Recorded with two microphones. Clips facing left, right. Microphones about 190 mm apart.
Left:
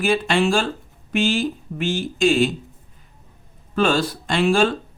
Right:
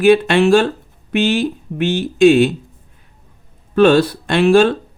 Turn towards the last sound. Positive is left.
turn(degrees=-60)  # may be behind; listen again after turning